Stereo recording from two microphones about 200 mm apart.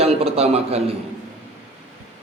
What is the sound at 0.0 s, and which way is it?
Speech, 30° right (ahead or behind).